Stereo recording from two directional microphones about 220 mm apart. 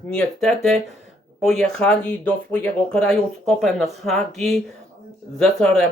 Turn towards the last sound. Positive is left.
turn(degrees=5)  # may be behind; listen again after turning